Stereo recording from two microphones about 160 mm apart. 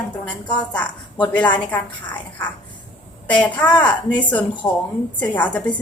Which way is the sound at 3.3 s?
10° left (ahead or behind).